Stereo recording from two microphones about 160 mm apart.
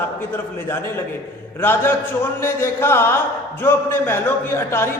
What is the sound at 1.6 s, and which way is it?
A man's voice, 15° left (ahead or behind).